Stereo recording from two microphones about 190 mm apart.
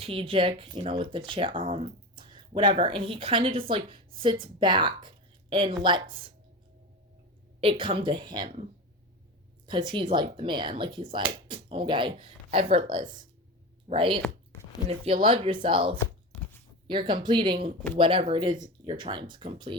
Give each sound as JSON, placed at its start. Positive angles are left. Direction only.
{"t": 0.0, "sound": "speech", "side_deg": -30}
{"t": 7.6, "sound": "speech", "side_deg": -25}
{"t": 9.6, "sound": "speech", "side_deg": -25}
{"t": 16.0, "sound": "a sound", "side_deg": 10}
{"t": 16.8, "sound": "speech", "side_deg": -25}